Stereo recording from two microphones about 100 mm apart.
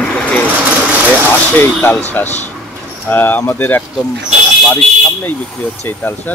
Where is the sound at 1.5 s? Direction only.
20° left (ahead or behind).